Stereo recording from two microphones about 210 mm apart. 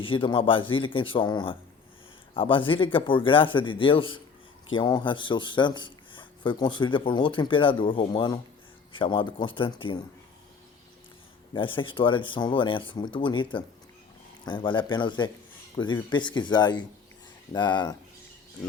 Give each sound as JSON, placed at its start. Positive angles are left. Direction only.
{"t": 0.0, "sound": "a man's voice", "side_deg": 25}
{"t": 11.5, "sound": "a man's voice", "side_deg": 25}